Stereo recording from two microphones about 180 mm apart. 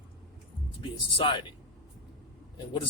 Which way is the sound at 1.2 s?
30° left (ahead or behind).